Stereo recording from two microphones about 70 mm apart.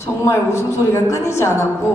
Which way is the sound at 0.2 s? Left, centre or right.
Left.